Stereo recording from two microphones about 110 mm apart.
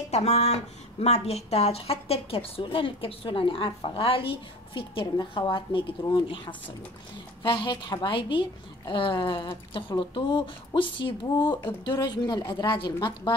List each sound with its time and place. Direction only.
0.1 s a woman's voice: 80° left; by 5.9 s 50° left (ahead or behind)
7.4 s a woman's voice: 45° left (ahead or behind)